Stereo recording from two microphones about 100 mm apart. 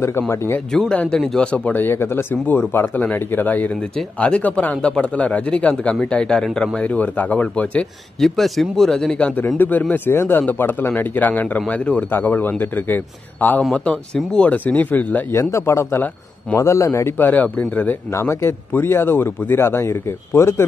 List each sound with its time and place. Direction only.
0.7 s speech: 10° left (ahead or behind)
9.6 s speech: 15° left (ahead or behind)
15.5 s speech: 30° left (ahead or behind)
18.1 s speech: 25° left (ahead or behind)